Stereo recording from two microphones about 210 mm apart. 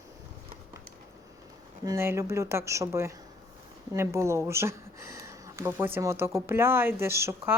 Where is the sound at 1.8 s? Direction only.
15° right (ahead or behind).